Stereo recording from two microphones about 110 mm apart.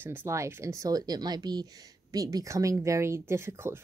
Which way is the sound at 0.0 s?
20° right (ahead or behind).